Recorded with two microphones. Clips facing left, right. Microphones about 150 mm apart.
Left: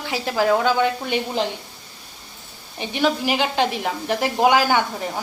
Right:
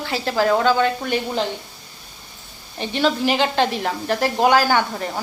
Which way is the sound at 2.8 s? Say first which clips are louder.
Right 1 dB; 10° left (ahead or behind).